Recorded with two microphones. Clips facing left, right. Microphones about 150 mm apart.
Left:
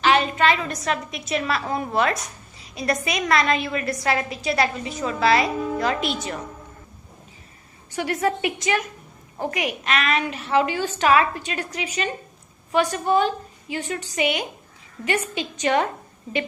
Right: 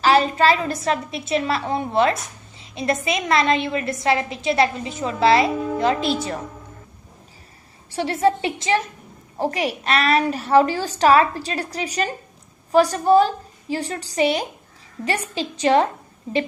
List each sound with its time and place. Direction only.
0.0 s a woman's voice: 35° right (ahead or behind)
7.9 s a woman's voice: 30° right (ahead or behind)